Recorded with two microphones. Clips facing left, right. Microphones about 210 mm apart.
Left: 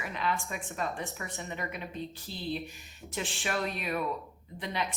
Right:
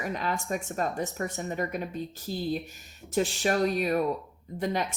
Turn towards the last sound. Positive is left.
turn(degrees=-45)  # may be behind; listen again after turning